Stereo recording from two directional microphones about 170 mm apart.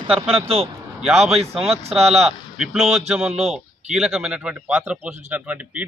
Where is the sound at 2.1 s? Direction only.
5° right (ahead or behind).